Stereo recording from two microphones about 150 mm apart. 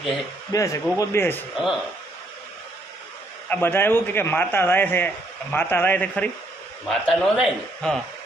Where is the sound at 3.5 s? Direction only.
15° left (ahead or behind).